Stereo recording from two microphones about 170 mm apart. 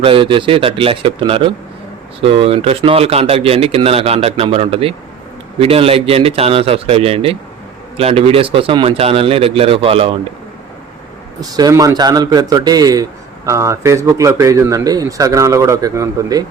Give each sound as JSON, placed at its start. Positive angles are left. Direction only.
{"t": 0.0, "sound": "speech", "side_deg": -30}
{"t": 11.3, "sound": "speech", "side_deg": -20}